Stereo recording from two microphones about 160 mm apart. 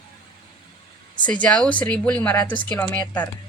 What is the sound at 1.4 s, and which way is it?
Speech, 5° left (ahead or behind).